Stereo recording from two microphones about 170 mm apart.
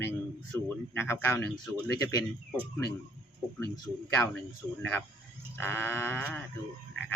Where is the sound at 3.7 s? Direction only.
15° left (ahead or behind).